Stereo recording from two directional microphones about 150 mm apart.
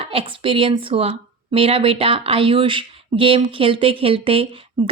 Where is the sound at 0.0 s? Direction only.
40° right (ahead or behind).